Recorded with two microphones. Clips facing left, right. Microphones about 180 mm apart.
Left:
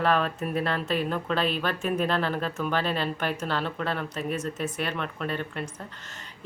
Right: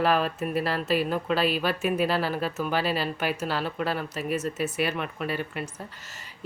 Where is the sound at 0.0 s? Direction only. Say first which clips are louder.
Right 1 dB; 5° right (ahead or behind).